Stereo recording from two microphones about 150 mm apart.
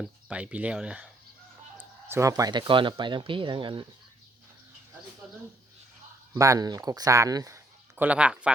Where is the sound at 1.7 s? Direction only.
20° right (ahead or behind); by 3.9 s 35° right (ahead or behind).